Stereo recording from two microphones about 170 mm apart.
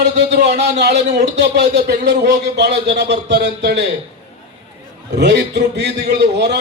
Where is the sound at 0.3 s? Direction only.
45° right (ahead or behind).